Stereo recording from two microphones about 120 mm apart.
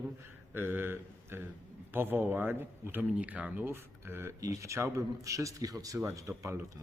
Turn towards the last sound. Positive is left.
turn(degrees=-25)  # may be behind; listen again after turning